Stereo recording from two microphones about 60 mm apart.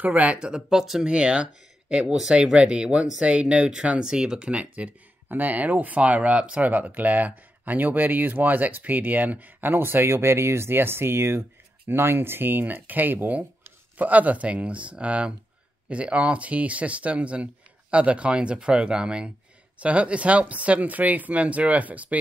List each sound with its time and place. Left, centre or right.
0.0 s speech: right
0.6 s speech: centre
1.1 s speech: centre